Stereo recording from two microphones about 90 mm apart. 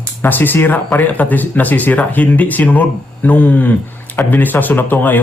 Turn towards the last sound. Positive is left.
turn(degrees=20)  # may be behind; listen again after turning